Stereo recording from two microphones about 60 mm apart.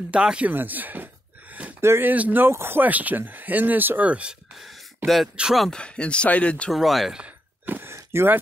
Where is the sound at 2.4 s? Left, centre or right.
Right.